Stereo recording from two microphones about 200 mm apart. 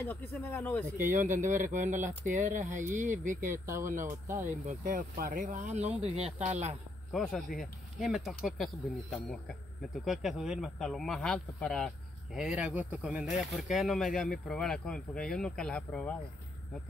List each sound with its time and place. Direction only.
0.0 s speech: 10° left (ahead or behind)
0.9 s speech: 40° right (ahead or behind)
3.4 s speech: 15° right (ahead or behind)
3.8 s speech: 40° right (ahead or behind)
7.1 s speech: centre (ahead or behind)
9.9 s speech: centre (ahead or behind)